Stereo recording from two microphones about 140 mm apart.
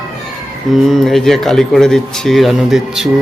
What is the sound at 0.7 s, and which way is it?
Speech, centre (ahead or behind).